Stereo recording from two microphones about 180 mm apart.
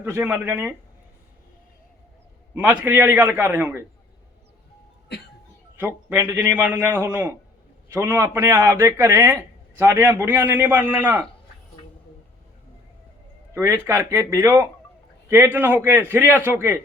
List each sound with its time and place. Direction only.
0.0 s a man's voice: 10° right (ahead or behind)
2.6 s a man's voice: 10° right (ahead or behind)
5.7 s a man's voice: 10° right (ahead or behind)
13.5 s a man's voice: 15° right (ahead or behind)